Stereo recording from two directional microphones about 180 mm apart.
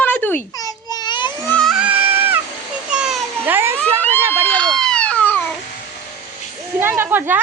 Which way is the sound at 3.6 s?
15° right (ahead or behind).